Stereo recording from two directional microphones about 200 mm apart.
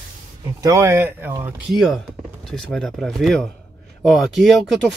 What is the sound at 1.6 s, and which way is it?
Speech, centre (ahead or behind).